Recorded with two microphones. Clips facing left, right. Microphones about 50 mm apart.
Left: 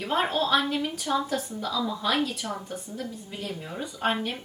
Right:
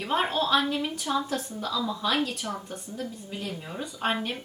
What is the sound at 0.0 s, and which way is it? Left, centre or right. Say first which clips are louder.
A woman's voice: even; centre.